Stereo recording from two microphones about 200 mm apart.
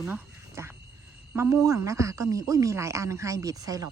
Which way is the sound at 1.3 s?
15° right (ahead or behind).